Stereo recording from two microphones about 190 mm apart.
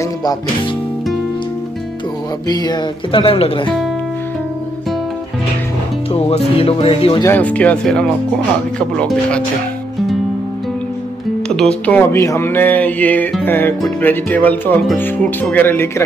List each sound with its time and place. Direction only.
2.4 s speech: 20° left (ahead or behind)
6.1 s speech: 30° left (ahead or behind)
7.2 s speech: 10° left (ahead or behind)
11.4 s speech: 5° left (ahead or behind)